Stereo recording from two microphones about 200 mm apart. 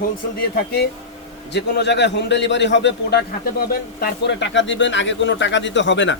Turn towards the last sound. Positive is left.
turn(degrees=65)  # may be behind; listen again after turning